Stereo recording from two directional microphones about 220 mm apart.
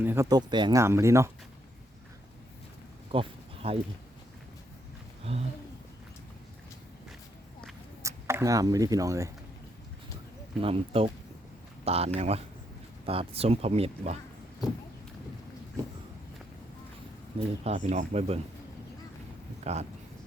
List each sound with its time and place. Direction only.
0.0 s speech: 10° right (ahead or behind)
3.1 s a sound: 25° right (ahead or behind)
5.3 s speech: 25° right (ahead or behind)
8.0 s speech: 10° right (ahead or behind)
10.6 s speech: 25° right (ahead or behind)
17.6 s speech: 30° right (ahead or behind)
19.7 s speech: 30° right (ahead or behind)